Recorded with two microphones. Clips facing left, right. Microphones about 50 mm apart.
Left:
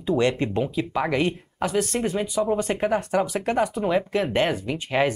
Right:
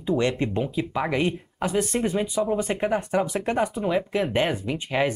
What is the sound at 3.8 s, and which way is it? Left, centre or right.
Speech, centre.